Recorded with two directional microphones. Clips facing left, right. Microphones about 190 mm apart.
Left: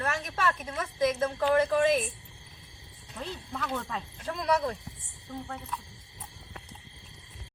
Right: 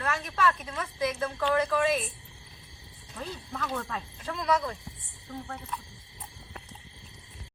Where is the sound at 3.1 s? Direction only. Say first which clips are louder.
Even; 5° left (ahead or behind).